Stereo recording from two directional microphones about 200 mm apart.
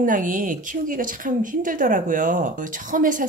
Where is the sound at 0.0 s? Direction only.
40° right (ahead or behind).